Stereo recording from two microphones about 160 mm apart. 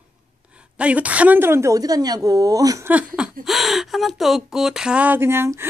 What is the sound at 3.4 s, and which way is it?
Speech, centre (ahead or behind).